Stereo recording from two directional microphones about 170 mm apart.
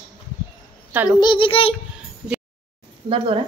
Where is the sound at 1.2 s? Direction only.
30° left (ahead or behind).